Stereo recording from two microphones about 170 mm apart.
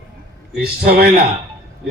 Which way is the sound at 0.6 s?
65° right (ahead or behind).